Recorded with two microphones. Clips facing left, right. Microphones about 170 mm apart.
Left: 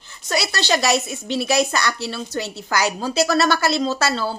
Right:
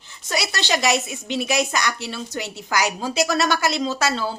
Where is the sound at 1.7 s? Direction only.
15° right (ahead or behind).